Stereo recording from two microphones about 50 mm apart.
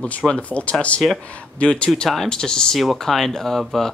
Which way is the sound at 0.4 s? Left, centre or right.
Left.